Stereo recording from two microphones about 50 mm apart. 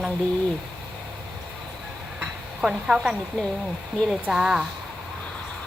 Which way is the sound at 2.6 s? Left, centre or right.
Centre.